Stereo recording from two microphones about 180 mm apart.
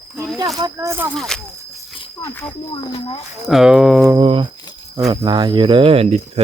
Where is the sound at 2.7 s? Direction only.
30° left (ahead or behind).